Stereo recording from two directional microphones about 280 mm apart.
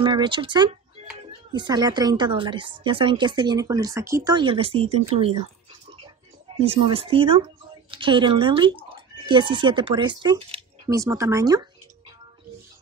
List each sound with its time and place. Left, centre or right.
0.0 s speech: centre
6.6 s speech: right